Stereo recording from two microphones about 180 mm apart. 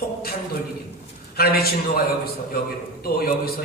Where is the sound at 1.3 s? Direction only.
60° left (ahead or behind).